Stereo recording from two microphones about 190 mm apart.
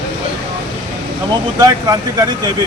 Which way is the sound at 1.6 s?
20° right (ahead or behind).